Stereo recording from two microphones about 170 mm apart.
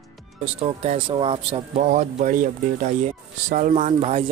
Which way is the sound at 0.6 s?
35° right (ahead or behind).